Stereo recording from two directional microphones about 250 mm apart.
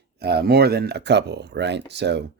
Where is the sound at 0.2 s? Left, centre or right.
Right.